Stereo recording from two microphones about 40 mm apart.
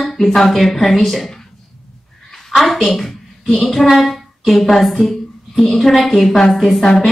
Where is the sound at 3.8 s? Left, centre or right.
Centre.